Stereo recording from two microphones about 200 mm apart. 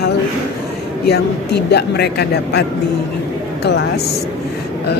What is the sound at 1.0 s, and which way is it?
Speech, 55° left (ahead or behind).